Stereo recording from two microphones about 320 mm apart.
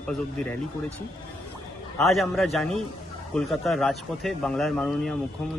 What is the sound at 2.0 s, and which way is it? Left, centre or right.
Speech, centre.